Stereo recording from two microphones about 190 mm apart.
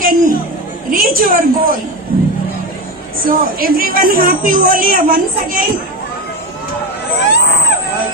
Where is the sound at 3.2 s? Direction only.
50° right (ahead or behind).